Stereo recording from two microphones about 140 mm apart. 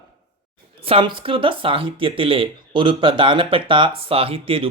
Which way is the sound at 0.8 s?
40° right (ahead or behind).